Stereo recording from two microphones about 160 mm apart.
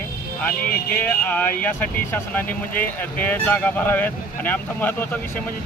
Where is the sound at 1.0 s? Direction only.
10° left (ahead or behind).